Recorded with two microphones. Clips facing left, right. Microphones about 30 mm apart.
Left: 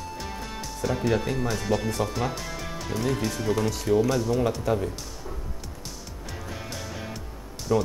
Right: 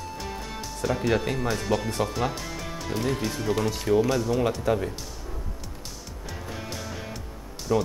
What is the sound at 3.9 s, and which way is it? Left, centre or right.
Speech, right.